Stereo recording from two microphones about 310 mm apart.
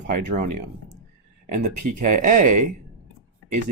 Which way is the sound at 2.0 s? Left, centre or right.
Right.